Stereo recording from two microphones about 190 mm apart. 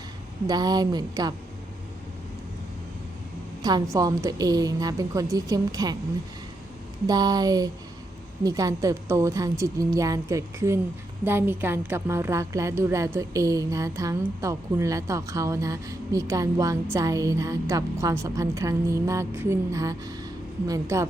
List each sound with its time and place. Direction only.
0.4 s a woman's voice: 20° right (ahead or behind)
3.6 s a woman's voice: 20° right (ahead or behind)
7.1 s a woman's voice: 20° right (ahead or behind)